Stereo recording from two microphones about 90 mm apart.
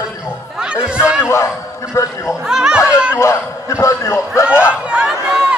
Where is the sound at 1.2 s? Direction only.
30° left (ahead or behind).